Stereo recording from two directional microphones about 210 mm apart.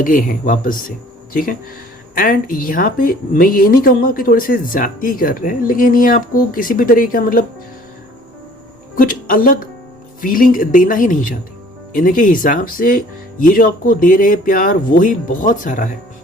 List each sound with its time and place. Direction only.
0.0 s speech: 40° left (ahead or behind)
9.0 s speech: 40° left (ahead or behind)